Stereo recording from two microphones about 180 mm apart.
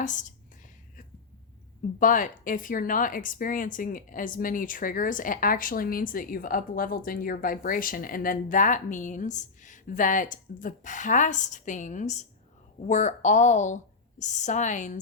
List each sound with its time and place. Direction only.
0.0 s a woman's voice: 45° left (ahead or behind)
2.0 s a woman's voice: 50° left (ahead or behind)